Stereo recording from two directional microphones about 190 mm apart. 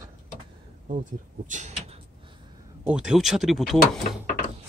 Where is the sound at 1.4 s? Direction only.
40° right (ahead or behind).